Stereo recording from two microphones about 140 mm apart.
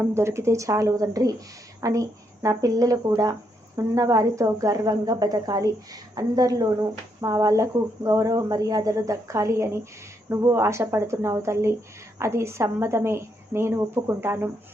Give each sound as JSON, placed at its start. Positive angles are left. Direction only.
{"t": 0.0, "sound": "a woman's voice", "side_deg": -20}